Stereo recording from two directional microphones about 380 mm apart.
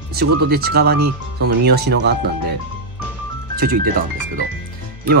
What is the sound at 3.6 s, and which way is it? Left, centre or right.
Speech, right.